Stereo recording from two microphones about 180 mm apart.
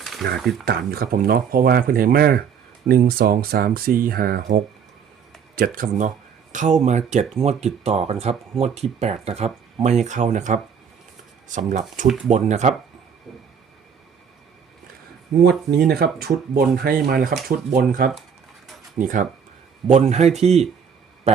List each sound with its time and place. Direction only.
0.0 s a sound: centre (ahead or behind)
0.6 s speech: 55° right (ahead or behind); by 12.7 s 40° right (ahead or behind)
15.4 s speech: 60° right (ahead or behind); by 20.7 s 35° right (ahead or behind)